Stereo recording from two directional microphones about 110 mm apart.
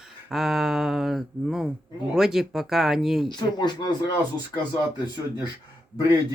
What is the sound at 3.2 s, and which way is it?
Speech, 40° left (ahead or behind).